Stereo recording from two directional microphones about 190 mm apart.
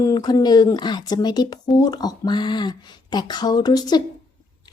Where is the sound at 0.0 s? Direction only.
20° left (ahead or behind).